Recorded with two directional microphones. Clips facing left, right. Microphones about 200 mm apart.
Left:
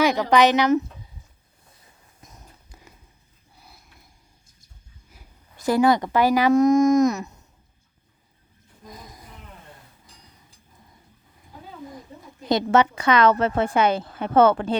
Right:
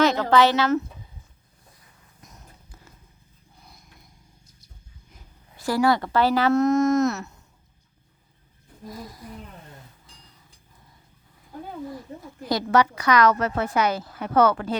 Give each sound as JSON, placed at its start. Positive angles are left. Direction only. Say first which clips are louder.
{"t": 0.0, "sound": "speech", "louder": "left 1 dB", "side_deg": 15}
{"t": 2.7, "sound": "horse", "louder": "left 3 dB", "side_deg": 15}
{"t": 3.5, "sound": "a sound", "louder": "even", "side_deg": 5}
{"t": 5.5, "sound": "speech", "louder": "left 3 dB", "side_deg": 20}
{"t": 8.9, "sound": "a woman's voice", "louder": "right 5 dB", "side_deg": 20}
{"t": 12.5, "sound": "a woman's voice", "louder": "left 2 dB", "side_deg": 25}